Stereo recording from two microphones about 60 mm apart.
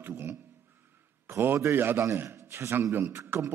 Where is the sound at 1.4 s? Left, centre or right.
Right.